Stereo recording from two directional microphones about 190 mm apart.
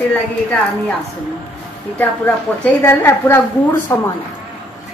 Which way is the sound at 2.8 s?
10° left (ahead or behind).